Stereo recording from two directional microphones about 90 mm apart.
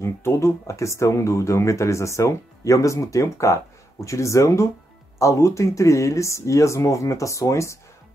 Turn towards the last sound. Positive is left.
turn(degrees=35)  # may be behind; listen again after turning